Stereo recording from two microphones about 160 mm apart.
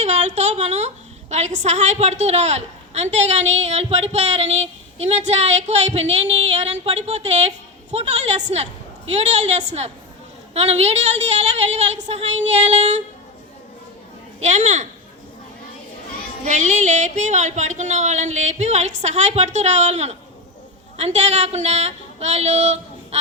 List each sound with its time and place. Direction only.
0.0 s a sound: 45° right (ahead or behind)
1.3 s a woman's voice: 45° right (ahead or behind)
14.4 s a woman's voice: 50° right (ahead or behind)
16.4 s a woman's voice: 50° right (ahead or behind)